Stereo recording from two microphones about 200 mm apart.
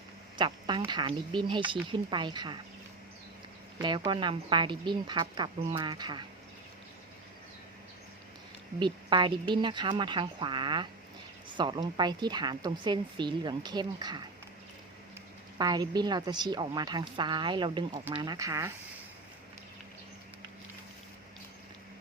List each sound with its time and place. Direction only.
0.3 s a sound: 25° right (ahead or behind)
0.8 s a woman's voice: 20° right (ahead or behind)
3.8 s a woman's voice: 20° right (ahead or behind)
8.8 s a woman's voice: 25° right (ahead or behind)
15.5 s a woman's voice: 20° right (ahead or behind)